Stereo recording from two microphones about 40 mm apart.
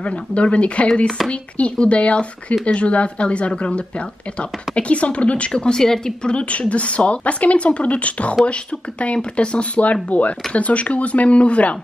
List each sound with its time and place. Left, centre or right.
0.0 s speech: left
5.5 s a woman's voice: centre
6.3 s speech: left